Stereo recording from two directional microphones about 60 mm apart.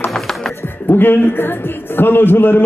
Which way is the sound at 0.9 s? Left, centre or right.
Left.